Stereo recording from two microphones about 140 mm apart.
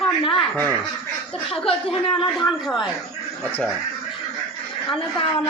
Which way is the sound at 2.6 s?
Centre (ahead or behind).